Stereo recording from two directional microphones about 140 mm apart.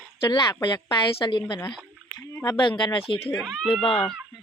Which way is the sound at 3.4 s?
5° left (ahead or behind).